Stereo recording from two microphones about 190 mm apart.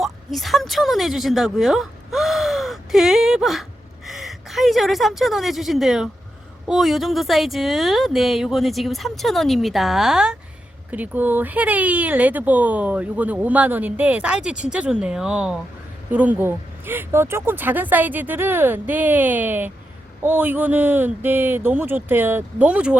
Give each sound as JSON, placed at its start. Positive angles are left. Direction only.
{"t": 0.0, "sound": "a woman's voice", "side_deg": 0}